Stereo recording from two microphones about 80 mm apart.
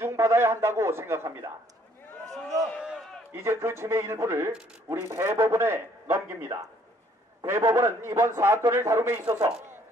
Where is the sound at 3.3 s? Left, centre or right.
Right.